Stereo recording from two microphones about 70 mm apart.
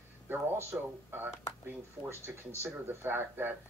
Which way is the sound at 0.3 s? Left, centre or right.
Right.